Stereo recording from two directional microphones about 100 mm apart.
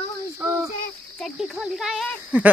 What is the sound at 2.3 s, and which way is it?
Speech, 15° right (ahead or behind).